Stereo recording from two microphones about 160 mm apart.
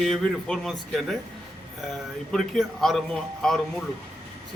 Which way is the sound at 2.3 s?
5° left (ahead or behind).